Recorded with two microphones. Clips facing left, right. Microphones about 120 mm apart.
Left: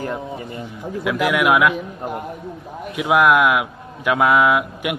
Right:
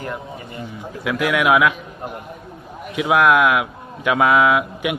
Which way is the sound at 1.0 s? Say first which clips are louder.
Even; 5° left (ahead or behind).